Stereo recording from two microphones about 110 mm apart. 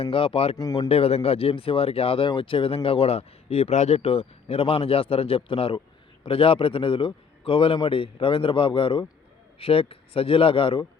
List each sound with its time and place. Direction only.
0.0 s speech: 55° left (ahead or behind)
0.5 s speech: 30° left (ahead or behind)
0.9 s a man's voice: 65° left (ahead or behind)